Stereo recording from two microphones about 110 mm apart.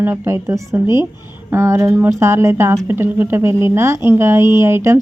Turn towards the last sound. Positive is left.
turn(degrees=-25)  # may be behind; listen again after turning